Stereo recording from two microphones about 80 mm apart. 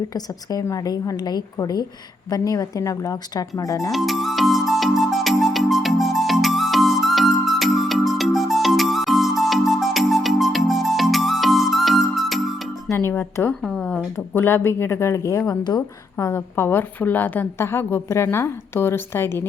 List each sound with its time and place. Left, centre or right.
0.1 s a woman's voice: left
3.9 s music: centre
13.1 s a woman's voice: left
13.5 s a woman's voice: centre
14.3 s a woman's voice: left